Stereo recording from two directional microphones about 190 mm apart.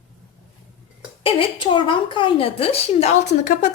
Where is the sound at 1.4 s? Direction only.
25° left (ahead or behind).